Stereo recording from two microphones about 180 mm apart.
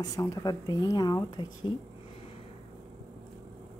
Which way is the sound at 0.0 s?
20° left (ahead or behind).